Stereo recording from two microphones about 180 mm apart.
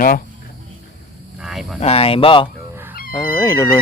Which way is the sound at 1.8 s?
35° left (ahead or behind).